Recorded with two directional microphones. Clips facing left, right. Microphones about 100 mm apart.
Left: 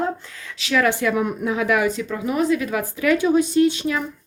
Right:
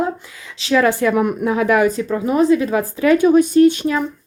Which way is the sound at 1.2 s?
50° right (ahead or behind).